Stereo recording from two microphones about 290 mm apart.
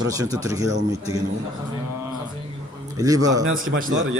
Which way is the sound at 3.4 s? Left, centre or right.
Right.